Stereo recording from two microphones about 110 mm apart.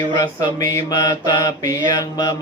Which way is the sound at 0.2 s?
35° left (ahead or behind).